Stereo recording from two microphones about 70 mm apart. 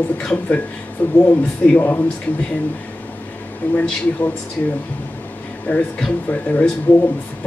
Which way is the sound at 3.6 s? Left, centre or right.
Left.